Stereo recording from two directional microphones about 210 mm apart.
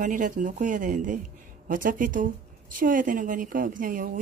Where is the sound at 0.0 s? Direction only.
40° right (ahead or behind).